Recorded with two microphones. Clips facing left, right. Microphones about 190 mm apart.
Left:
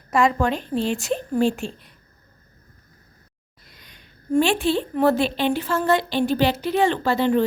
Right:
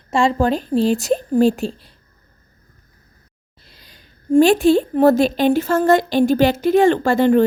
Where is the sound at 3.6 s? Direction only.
30° right (ahead or behind); by 7.4 s 50° right (ahead or behind).